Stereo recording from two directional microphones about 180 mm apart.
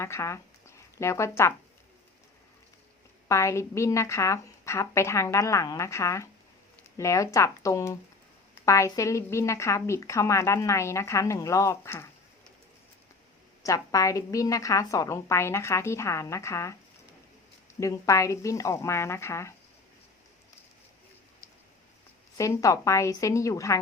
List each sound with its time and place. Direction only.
0.0 s a woman's voice: 15° left (ahead or behind)
3.2 s a woman's voice: 15° left (ahead or behind)
13.6 s a woman's voice: 20° left (ahead or behind)
17.7 s a woman's voice: 15° left (ahead or behind)
22.4 s a woman's voice: 15° left (ahead or behind)